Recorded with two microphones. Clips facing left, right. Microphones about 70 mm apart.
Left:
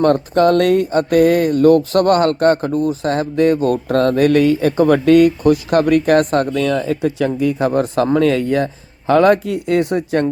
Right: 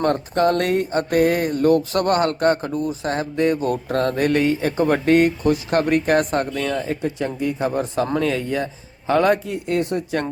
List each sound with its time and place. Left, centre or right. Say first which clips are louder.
0.0 s speech: left 6 dB; left
5.4 s speech: left 5 dB; left
7.3 s speech: left 6 dB; left